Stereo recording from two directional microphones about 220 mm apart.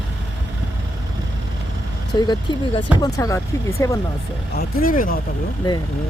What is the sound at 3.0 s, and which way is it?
Speech, 15° left (ahead or behind).